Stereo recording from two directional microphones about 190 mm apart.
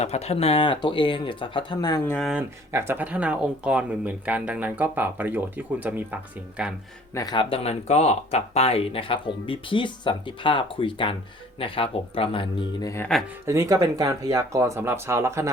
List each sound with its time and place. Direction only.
0.0 s speech: 35° left (ahead or behind)
2.0 s speech: centre (ahead or behind)
2.7 s speech: 10° right (ahead or behind)
7.1 s speech: 20° left (ahead or behind)
13.4 s speech: 15° right (ahead or behind)